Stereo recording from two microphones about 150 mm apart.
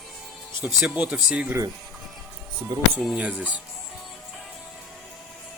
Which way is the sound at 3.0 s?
Centre (ahead or behind).